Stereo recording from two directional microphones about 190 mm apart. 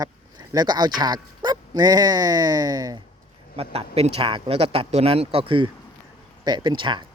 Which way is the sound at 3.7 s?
35° right (ahead or behind).